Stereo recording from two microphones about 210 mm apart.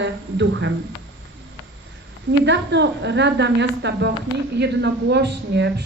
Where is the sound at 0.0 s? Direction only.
60° right (ahead or behind).